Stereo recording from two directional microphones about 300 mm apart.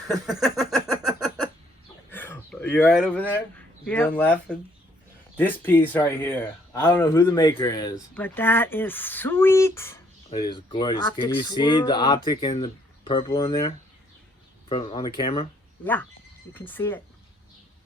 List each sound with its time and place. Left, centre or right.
0.1 s speech: centre
1.0 s a sound: centre
3.8 s speech: centre
15.8 s speech: centre